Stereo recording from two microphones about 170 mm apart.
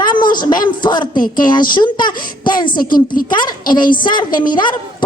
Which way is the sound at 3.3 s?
25° left (ahead or behind).